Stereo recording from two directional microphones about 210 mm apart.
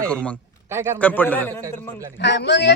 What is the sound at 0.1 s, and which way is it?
Speech, 5° left (ahead or behind).